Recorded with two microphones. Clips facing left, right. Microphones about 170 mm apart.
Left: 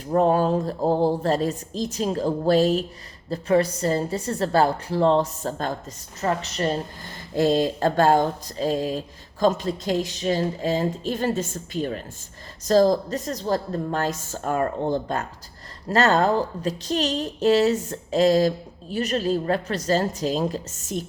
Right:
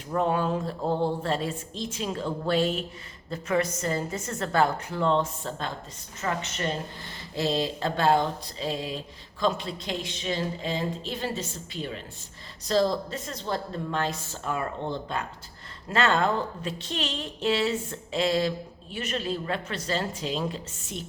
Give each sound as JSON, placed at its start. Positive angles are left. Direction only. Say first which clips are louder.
{"t": 0.1, "sound": "a woman's voice", "louder": "left 6 dB", "side_deg": 40}